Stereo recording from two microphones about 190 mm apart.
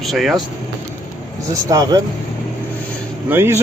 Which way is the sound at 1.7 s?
20° right (ahead or behind).